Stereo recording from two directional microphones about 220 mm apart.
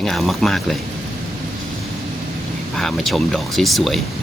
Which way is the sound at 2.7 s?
Centre (ahead or behind).